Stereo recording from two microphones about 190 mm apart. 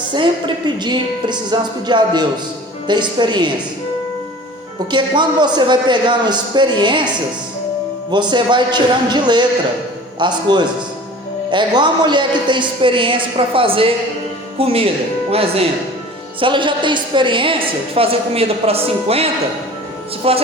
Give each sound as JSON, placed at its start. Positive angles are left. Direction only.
{"t": 0.1, "sound": "a woman's voice", "side_deg": -25}
{"t": 4.9, "sound": "a woman's voice", "side_deg": -25}
{"t": 8.1, "sound": "a woman's voice", "side_deg": -25}